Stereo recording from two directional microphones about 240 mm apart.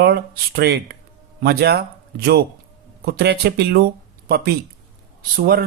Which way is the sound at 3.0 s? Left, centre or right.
Right.